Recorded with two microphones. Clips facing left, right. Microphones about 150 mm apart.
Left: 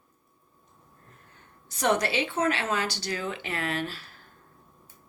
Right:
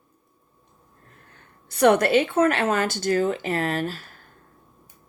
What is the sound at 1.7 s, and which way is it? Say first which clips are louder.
Speech: right 8 dB; 60° right (ahead or behind).